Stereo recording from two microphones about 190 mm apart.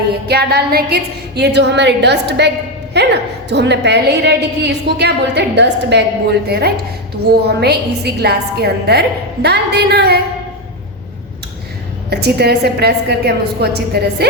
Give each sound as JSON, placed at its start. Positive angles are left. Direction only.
{"t": 0.3, "sound": "a woman's voice", "side_deg": -55}
{"t": 12.1, "sound": "a woman's voice", "side_deg": -55}